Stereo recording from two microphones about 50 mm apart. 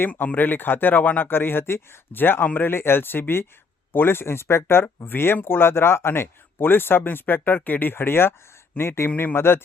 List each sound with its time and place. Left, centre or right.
0.1 s speech: left
1.3 s speech: left